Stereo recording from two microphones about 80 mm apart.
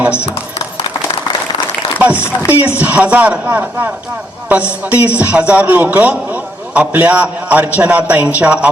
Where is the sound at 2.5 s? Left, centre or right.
Centre.